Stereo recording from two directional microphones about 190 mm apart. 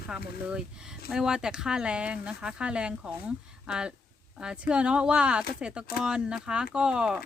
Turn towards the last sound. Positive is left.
turn(degrees=-5)  # may be behind; listen again after turning